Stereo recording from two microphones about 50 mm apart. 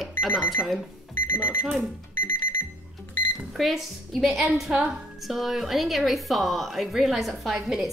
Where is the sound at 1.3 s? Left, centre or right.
Left.